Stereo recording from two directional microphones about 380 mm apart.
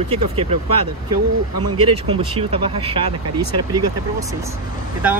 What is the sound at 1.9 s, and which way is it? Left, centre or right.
Speech, centre.